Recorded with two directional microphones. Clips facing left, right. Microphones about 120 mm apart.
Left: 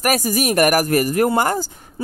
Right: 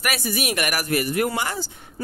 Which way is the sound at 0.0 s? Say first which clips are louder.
Left 7 dB; 40° left (ahead or behind).